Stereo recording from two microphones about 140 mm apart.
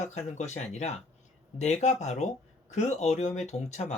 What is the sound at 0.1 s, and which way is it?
Speech, 55° left (ahead or behind).